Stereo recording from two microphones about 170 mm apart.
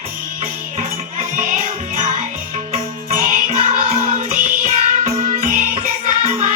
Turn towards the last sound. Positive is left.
turn(degrees=-45)  # may be behind; listen again after turning